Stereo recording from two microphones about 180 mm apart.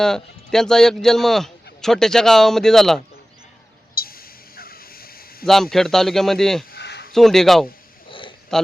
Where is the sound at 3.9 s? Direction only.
55° left (ahead or behind).